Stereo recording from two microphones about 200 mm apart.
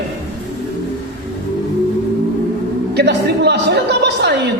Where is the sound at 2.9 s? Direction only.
55° right (ahead or behind).